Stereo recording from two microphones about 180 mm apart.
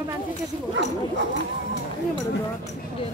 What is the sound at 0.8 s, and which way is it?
Dog, 75° right (ahead or behind).